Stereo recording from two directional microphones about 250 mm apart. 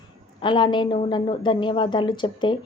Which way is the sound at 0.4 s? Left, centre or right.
Centre.